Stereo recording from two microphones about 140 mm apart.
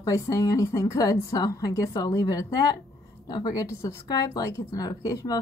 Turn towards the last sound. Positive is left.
turn(degrees=25)  # may be behind; listen again after turning